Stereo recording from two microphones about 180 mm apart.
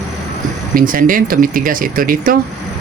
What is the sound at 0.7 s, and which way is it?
Speech, 50° right (ahead or behind).